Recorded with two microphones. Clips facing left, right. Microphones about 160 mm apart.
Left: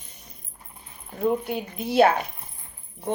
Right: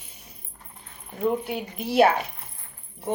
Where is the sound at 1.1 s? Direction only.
Centre (ahead or behind).